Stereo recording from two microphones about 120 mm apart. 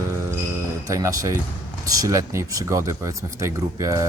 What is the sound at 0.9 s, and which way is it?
Speech, 30° right (ahead or behind).